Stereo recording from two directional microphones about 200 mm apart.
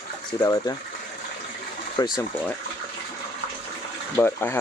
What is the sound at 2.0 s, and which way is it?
Speech, 20° left (ahead or behind).